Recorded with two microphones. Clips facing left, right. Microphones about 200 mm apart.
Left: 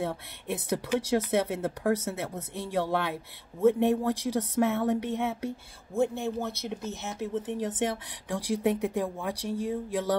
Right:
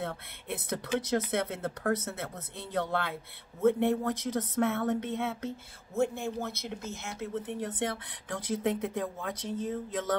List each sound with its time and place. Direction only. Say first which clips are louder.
0.0 s speech: left 4 dB; 15° left (ahead or behind)
9.3 s speech: left 3 dB; 20° right (ahead or behind)